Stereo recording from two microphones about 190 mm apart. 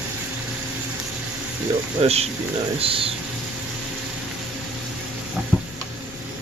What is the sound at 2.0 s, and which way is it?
Speech, 30° right (ahead or behind).